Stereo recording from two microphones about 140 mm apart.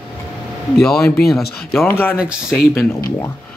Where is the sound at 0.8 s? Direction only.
5° left (ahead or behind).